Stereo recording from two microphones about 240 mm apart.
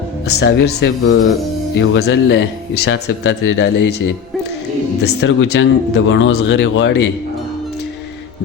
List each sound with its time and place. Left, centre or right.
0.3 s speech: left
5.2 s speech: left